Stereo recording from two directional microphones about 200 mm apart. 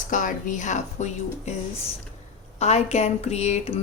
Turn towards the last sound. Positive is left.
turn(degrees=30)  # may be behind; listen again after turning